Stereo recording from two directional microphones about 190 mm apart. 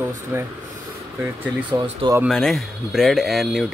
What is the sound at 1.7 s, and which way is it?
Speech, 15° right (ahead or behind).